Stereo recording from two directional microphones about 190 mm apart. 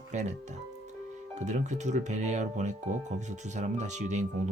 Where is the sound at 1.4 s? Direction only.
40° right (ahead or behind).